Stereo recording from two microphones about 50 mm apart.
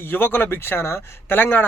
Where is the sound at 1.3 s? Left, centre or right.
Left.